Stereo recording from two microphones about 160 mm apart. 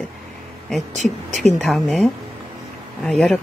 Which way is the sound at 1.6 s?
Centre (ahead or behind).